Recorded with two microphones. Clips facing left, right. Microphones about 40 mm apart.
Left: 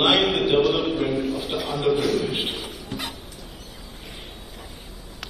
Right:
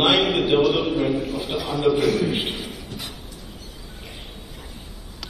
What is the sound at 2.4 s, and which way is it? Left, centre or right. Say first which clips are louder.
Speech: right 1 dB; left.